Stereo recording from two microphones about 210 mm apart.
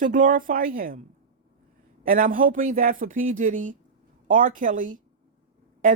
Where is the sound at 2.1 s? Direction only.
40° right (ahead or behind).